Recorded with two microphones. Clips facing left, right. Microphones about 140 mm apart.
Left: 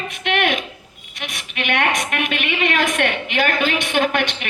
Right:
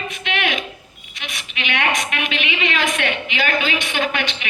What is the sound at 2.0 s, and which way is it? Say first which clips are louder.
A woman's voice: left 2 dB; 50° left (ahead or behind).